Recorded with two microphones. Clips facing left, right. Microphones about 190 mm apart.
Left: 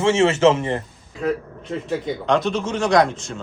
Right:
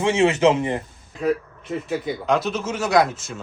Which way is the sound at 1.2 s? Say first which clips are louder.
Right 1 dB; 5° right (ahead or behind).